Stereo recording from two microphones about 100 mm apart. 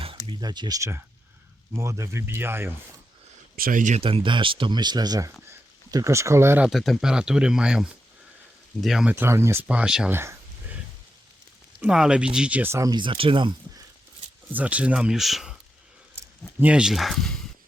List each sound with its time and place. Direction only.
0.0 s a sound: 60° right (ahead or behind)
0.4 s speech: 45° right (ahead or behind)
0.8 s speech: 25° right (ahead or behind)
3.9 s speech: 65° right (ahead or behind); by 6.6 s 25° right (ahead or behind)
6.7 s speech: centre (ahead or behind)
9.0 s speech: 25° right (ahead or behind)
9.6 s speech: 10° right (ahead or behind)
10.1 s a sound: 25° right (ahead or behind)
11.8 s speech: 5° right (ahead or behind)
12.7 s speech: 35° right (ahead or behind)
13.0 s speech: 60° right (ahead or behind)
14.5 s speech: 15° right (ahead or behind)
16.1 s speech: 15° right (ahead or behind); by 17.4 s 5° left (ahead or behind)